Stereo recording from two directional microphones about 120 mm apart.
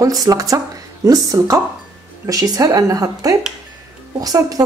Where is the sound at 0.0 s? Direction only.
30° right (ahead or behind).